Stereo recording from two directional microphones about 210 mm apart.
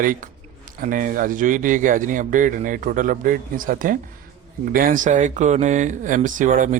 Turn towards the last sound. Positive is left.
turn(degrees=-35)  # may be behind; listen again after turning